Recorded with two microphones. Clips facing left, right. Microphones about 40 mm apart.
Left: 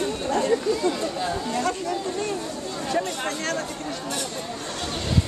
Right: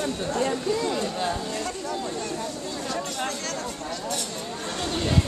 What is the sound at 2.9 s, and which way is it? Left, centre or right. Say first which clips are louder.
Speech: left 4 dB; left.